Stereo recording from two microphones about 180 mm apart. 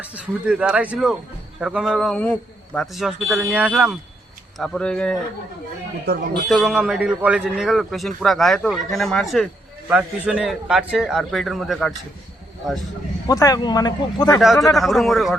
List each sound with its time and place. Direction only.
0.0 s a man's voice: 5° right (ahead or behind)
6.1 s speech: 65° right (ahead or behind)
6.5 s a man's voice: 5° right (ahead or behind)
13.2 s speech: 20° left (ahead or behind)
14.8 s a man's voice: centre (ahead or behind)